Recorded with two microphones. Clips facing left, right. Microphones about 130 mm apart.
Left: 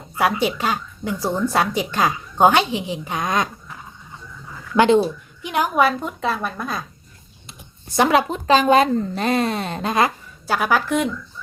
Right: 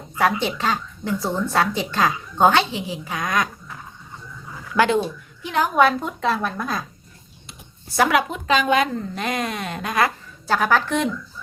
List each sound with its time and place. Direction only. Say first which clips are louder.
0.2 s speech: left 1 dB; 10° left (ahead or behind)
4.7 s a woman's voice: left 3 dB; 25° left (ahead or behind)
5.4 s a sound: even; 15° left (ahead or behind)
5.7 s a woman's voice: right 3 dB; centre (ahead or behind)
7.9 s a woman's voice: left 2 dB; 25° left (ahead or behind)
8.3 s a woman's voice: left 4 dB; 35° left (ahead or behind)
10.4 s speech: even; 10° left (ahead or behind)